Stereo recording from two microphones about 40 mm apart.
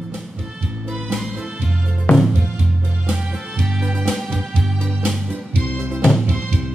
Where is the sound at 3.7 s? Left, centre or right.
Centre.